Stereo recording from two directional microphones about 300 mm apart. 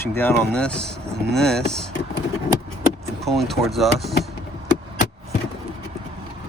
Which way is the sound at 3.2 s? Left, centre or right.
Centre.